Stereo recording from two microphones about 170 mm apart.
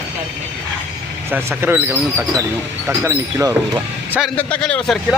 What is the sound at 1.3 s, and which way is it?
Speech, 15° right (ahead or behind).